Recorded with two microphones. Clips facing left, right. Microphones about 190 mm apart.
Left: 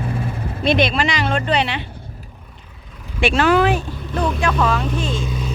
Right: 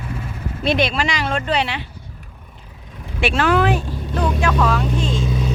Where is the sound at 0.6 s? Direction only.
5° right (ahead or behind).